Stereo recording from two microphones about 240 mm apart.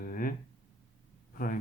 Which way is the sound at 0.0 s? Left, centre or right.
Left.